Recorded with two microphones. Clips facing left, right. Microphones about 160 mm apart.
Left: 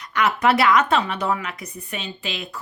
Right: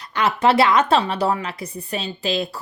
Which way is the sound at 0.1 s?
30° right (ahead or behind).